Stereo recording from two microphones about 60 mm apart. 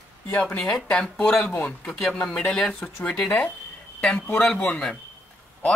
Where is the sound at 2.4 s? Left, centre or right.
Centre.